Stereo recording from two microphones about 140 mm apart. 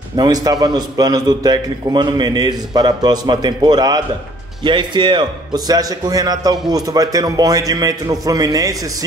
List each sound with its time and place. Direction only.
0.1 s a man's voice: 30° right (ahead or behind)